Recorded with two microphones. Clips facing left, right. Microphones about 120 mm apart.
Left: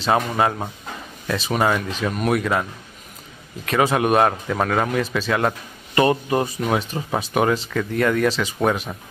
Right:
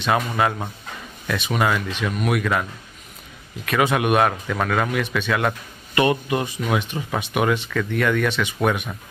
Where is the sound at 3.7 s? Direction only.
30° left (ahead or behind).